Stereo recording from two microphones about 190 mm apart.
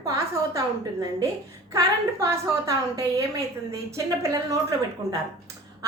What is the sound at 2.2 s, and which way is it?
A woman's voice, 15° right (ahead or behind).